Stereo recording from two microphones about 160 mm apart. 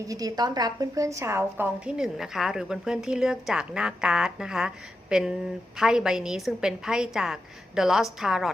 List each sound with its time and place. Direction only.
0.1 s a woman's voice: 25° right (ahead or behind); by 8.4 s centre (ahead or behind)